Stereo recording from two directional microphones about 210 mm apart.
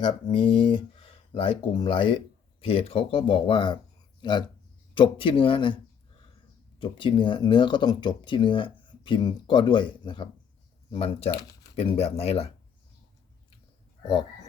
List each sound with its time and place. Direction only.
0.0 s speech: 25° left (ahead or behind)